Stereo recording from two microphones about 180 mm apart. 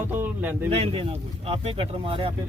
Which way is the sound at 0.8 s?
30° right (ahead or behind).